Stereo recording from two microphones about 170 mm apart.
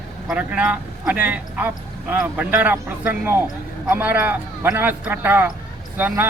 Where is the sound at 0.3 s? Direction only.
5° right (ahead or behind).